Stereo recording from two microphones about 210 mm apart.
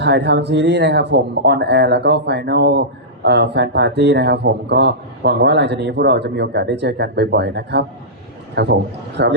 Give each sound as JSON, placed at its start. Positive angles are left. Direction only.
{"t": 0.0, "sound": "a man's voice", "side_deg": -55}